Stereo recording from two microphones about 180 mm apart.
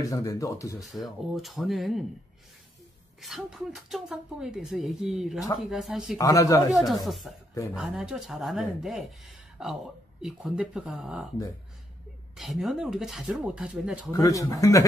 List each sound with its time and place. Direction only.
0.0 s speech: 20° left (ahead or behind)
0.8 s a woman's voice: centre (ahead or behind)
3.2 s a woman's voice: centre (ahead or behind)
6.1 s speech: 20° left (ahead or behind)
6.7 s a woman's voice: centre (ahead or behind)
10.2 s a woman's voice: 5° right (ahead or behind)
12.4 s a woman's voice: centre (ahead or behind)
14.1 s speech: 20° left (ahead or behind)